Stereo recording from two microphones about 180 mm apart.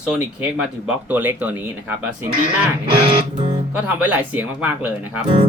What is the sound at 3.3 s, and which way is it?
Guitar, 25° right (ahead or behind).